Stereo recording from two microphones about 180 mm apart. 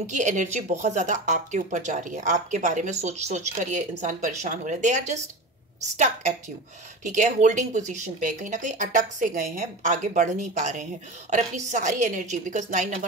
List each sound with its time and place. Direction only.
0.0 s speech: 40° right (ahead or behind)